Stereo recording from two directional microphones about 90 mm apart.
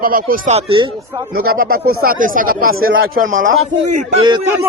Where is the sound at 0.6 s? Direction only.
70° right (ahead or behind).